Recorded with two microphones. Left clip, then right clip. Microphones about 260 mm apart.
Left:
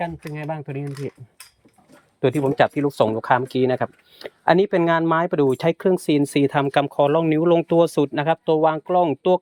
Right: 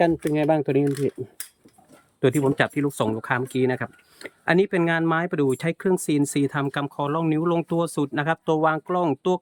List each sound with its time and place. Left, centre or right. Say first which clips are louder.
0.0 s speech: right 8 dB; right
2.2 s speech: left 3 dB; centre